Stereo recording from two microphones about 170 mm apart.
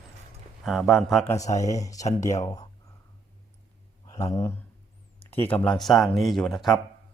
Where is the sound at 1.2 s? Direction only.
20° left (ahead or behind).